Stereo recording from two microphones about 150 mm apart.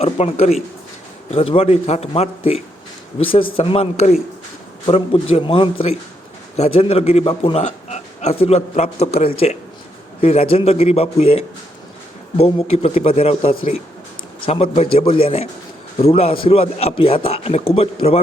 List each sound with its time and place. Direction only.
0.0 s a man's voice: 45° left (ahead or behind)